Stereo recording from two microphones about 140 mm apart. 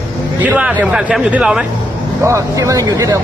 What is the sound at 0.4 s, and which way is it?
Speech, 10° right (ahead or behind).